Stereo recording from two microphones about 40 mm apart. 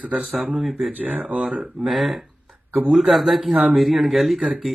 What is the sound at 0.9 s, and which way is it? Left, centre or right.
Speech, right.